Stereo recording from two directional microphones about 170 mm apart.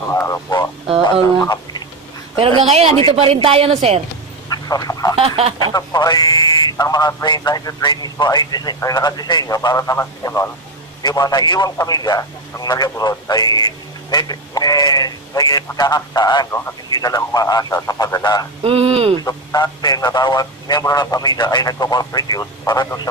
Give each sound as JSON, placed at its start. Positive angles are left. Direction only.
{"t": 0.1, "sound": "a sound", "side_deg": 15}
{"t": 2.3, "sound": "speech", "side_deg": -35}
{"t": 4.5, "sound": "a sound", "side_deg": 20}
{"t": 5.1, "sound": "speech", "side_deg": -35}
{"t": 5.6, "sound": "a man's voice", "side_deg": 20}
{"t": 16.4, "sound": "a man's voice", "side_deg": 15}
{"t": 18.6, "sound": "speech", "side_deg": -35}
{"t": 19.2, "sound": "a man's voice", "side_deg": 25}